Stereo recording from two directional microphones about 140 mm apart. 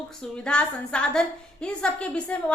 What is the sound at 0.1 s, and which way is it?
A woman's voice, 5° left (ahead or behind).